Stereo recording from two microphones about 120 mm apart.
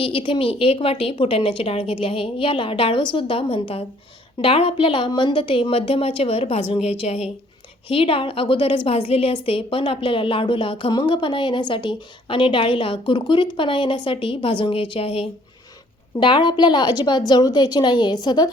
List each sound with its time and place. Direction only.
0.0 s a woman's voice: 45° left (ahead or behind)
7.9 s a woman's voice: 50° left (ahead or behind)
16.2 s a woman's voice: 40° left (ahead or behind)